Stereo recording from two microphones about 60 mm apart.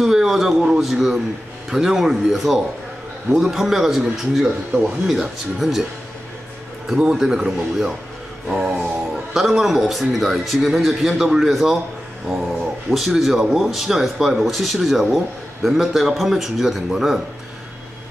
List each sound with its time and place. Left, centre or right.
0.0 s speech: centre
6.9 s speech: centre
8.6 s music: centre
9.3 s speech: centre
12.9 s speech: centre